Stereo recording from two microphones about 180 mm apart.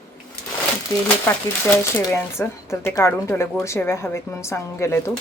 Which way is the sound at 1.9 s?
15° left (ahead or behind).